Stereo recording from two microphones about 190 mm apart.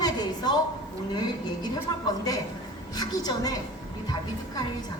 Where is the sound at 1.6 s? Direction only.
20° left (ahead or behind).